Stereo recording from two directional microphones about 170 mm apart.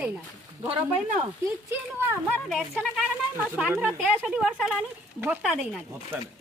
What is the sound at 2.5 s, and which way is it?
Speech, centre (ahead or behind).